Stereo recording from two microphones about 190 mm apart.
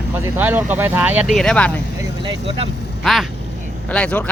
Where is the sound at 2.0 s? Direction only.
25° right (ahead or behind).